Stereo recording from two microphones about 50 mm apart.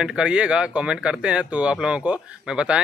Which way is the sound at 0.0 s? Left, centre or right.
Centre.